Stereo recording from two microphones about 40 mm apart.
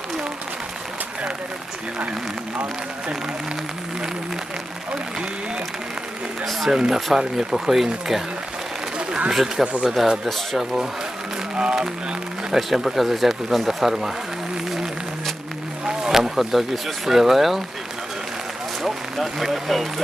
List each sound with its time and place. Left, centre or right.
6.4 s speech: centre
6.7 s speech: centre
9.0 s a sound: right
9.3 s speech: centre
10.6 s speech: centre
11.5 s speech: right
12.5 s speech: centre
15.9 s speech: centre
18.8 s speech: centre